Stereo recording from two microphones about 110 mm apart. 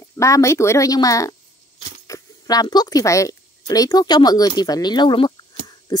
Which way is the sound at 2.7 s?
35° left (ahead or behind).